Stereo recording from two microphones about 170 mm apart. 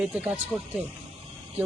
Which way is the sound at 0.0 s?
10° right (ahead or behind).